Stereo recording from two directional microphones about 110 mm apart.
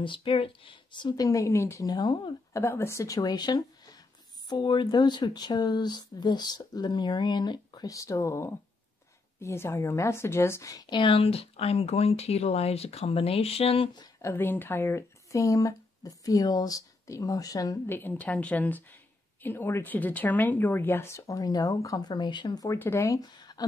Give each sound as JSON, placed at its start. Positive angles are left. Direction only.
{"t": 0.0, "sound": "speech", "side_deg": 50}
{"t": 2.5, "sound": "a woman's voice", "side_deg": 20}
{"t": 14.2, "sound": "speech", "side_deg": 20}
{"t": 17.8, "sound": "a woman's voice", "side_deg": 20}
{"t": 22.7, "sound": "speech", "side_deg": 25}